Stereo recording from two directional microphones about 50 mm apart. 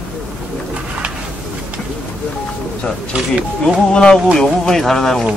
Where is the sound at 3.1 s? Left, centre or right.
Centre.